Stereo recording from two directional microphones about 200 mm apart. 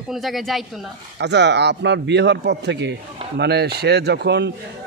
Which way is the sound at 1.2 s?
60° right (ahead or behind).